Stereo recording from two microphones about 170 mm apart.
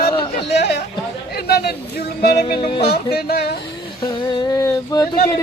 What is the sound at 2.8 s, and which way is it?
Music, 70° left (ahead or behind).